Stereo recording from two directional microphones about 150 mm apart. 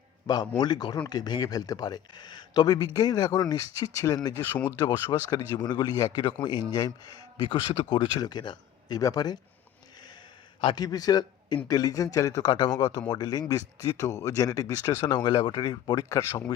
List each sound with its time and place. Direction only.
0.3 s speech: 25° left (ahead or behind)
10.6 s speech: 30° left (ahead or behind)